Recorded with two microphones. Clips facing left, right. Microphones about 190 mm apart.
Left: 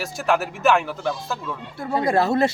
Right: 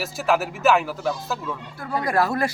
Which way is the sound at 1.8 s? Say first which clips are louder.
Left 3 dB; 25° left (ahead or behind).